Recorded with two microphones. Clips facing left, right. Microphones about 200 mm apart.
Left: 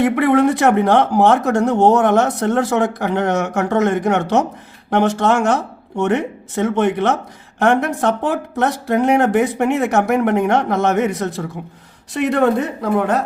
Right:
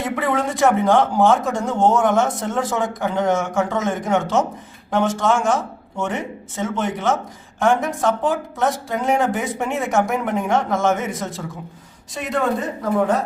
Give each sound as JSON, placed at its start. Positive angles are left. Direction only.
{"t": 0.0, "sound": "a woman's voice", "side_deg": 60}